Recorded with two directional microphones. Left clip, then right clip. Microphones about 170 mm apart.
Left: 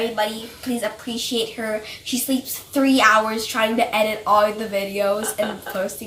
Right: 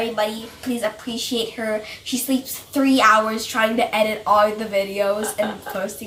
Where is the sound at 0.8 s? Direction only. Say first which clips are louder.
Right 2 dB; 5° right (ahead or behind).